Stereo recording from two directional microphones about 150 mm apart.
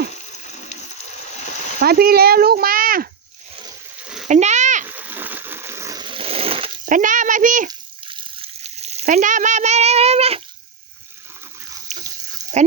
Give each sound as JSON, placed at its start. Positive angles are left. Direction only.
{"t": 1.8, "sound": "speech", "side_deg": -90}
{"t": 4.3, "sound": "a sound", "side_deg": -50}
{"t": 4.9, "sound": "a sound", "side_deg": -10}
{"t": 6.8, "sound": "a child's voice", "side_deg": -60}
{"t": 7.7, "sound": "frying", "side_deg": -35}
{"t": 11.9, "sound": "pig", "side_deg": -55}
{"t": 12.6, "sound": "speech", "side_deg": -50}